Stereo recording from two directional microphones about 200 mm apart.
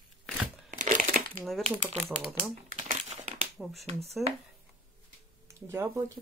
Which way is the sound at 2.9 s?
35° right (ahead or behind).